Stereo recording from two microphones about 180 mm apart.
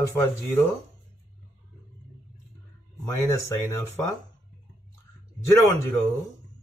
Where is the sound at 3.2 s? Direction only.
15° left (ahead or behind).